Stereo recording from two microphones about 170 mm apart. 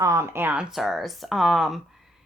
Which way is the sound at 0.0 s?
15° right (ahead or behind).